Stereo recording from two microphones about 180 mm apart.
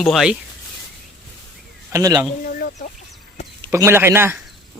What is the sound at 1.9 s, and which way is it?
Speech, 20° right (ahead or behind).